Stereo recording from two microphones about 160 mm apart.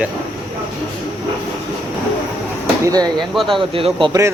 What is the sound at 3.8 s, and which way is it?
Speech, 35° right (ahead or behind).